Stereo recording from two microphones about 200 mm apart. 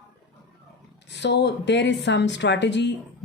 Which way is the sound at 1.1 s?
60° left (ahead or behind).